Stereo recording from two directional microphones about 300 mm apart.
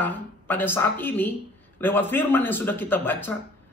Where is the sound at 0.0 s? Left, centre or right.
Centre.